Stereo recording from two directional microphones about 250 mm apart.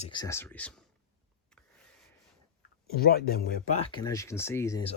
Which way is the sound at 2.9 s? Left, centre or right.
Left.